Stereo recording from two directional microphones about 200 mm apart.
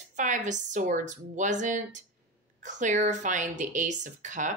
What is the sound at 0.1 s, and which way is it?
Speech, 40° right (ahead or behind).